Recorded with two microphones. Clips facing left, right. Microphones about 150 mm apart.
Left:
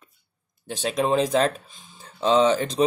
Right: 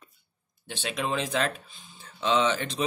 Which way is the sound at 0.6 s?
40° left (ahead or behind).